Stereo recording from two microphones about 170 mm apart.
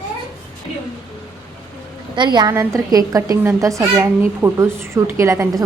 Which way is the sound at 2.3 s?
20° right (ahead or behind).